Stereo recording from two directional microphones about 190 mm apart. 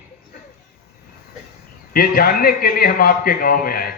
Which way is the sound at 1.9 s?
50° left (ahead or behind).